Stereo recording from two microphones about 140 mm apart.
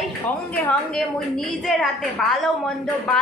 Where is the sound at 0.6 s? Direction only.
5° left (ahead or behind).